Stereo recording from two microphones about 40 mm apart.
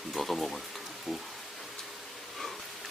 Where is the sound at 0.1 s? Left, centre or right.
Centre.